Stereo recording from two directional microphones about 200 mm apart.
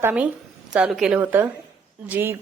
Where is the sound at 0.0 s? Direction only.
10° right (ahead or behind).